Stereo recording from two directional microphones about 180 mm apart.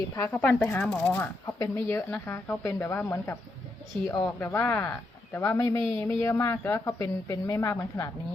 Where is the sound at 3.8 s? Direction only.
5° left (ahead or behind).